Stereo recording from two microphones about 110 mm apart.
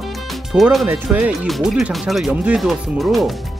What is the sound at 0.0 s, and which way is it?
Music, centre (ahead or behind).